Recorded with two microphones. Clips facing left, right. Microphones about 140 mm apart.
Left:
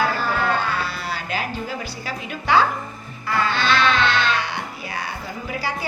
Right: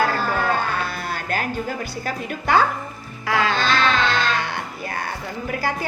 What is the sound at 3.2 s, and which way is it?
Music, 90° right.